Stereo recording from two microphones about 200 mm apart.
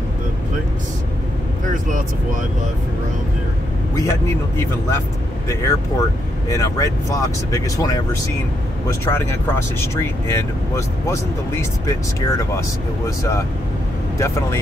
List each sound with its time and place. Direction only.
5.5 s speech: 15° left (ahead or behind)
9.0 s speech: 10° left (ahead or behind)